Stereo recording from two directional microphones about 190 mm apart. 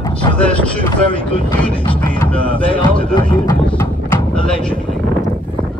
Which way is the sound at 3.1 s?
25° left (ahead or behind).